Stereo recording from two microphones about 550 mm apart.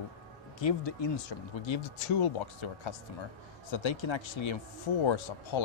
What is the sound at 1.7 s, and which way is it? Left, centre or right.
Speech, left.